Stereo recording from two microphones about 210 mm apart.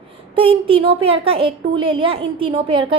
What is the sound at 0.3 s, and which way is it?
A woman's voice, 25° right (ahead or behind).